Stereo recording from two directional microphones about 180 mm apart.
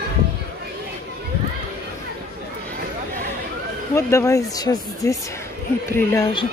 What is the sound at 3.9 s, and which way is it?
Speech, 15° left (ahead or behind).